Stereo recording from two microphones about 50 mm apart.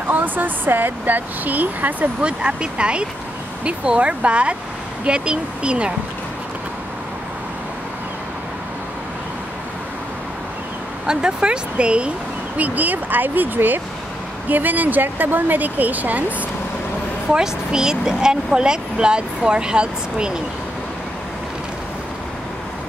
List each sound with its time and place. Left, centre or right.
0.1 s speech: right
2.2 s speech: centre
11.1 s speech: centre
12.5 s speech: right
17.3 s speech: centre